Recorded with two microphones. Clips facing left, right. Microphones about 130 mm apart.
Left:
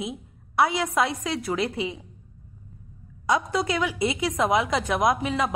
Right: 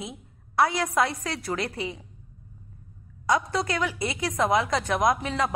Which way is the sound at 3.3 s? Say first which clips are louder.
Left 1 dB; 5° left (ahead or behind).